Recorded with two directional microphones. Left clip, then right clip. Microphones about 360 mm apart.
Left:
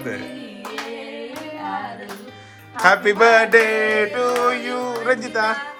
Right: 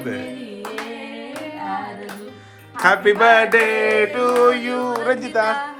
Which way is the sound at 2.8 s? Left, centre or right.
Centre.